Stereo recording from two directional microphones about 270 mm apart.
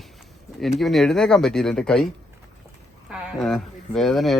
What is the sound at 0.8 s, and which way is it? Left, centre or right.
Speech, centre.